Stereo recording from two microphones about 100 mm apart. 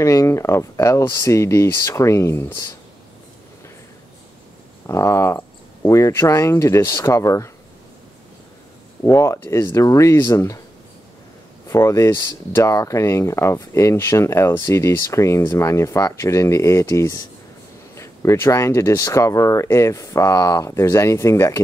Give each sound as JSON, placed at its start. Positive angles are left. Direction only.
{"t": 0.0, "sound": "speech", "side_deg": 30}
{"t": 4.8, "sound": "speech", "side_deg": 30}
{"t": 9.0, "sound": "speech", "side_deg": 30}
{"t": 11.7, "sound": "speech", "side_deg": 30}